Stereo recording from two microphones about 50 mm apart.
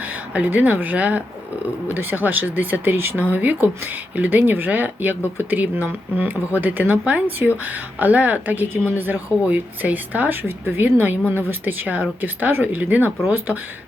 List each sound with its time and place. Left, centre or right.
0.0 s speech: right
2.0 s speech: right
3.2 s speech: right